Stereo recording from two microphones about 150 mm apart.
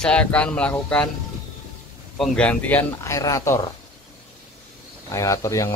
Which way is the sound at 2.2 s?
10° left (ahead or behind).